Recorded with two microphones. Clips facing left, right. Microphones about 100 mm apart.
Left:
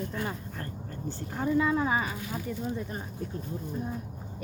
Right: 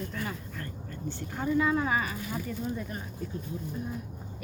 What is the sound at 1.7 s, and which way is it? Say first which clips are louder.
Speech: left 1 dB; 25° left (ahead or behind).